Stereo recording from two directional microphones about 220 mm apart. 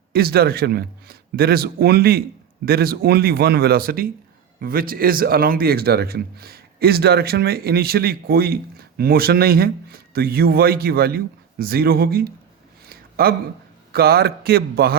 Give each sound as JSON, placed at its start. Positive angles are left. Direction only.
{"t": 0.1, "sound": "speech", "side_deg": -45}
{"t": 12.9, "sound": "a sound", "side_deg": -45}
{"t": 13.9, "sound": "speech", "side_deg": -45}